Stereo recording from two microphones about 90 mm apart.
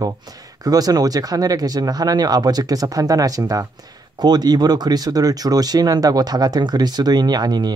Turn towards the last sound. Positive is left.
turn(degrees=-50)  # may be behind; listen again after turning